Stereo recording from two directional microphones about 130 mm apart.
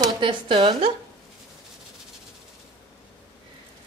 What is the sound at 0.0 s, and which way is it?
Speech, 40° right (ahead or behind).